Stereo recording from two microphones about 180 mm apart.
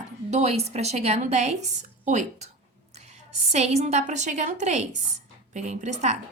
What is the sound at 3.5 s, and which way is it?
A woman's voice, 35° right (ahead or behind).